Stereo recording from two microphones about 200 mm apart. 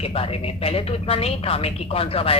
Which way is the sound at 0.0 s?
30° left (ahead or behind).